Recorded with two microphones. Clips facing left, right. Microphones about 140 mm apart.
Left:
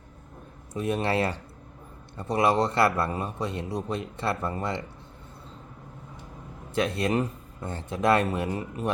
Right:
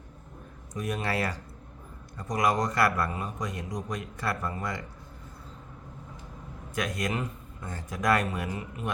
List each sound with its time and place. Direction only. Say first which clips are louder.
0.7 s a man's voice: left 5 dB; 25° left (ahead or behind)
6.7 s a man's voice: left 6 dB; 30° left (ahead or behind)